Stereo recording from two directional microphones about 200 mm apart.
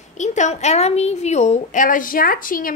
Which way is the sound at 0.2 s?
35° left (ahead or behind).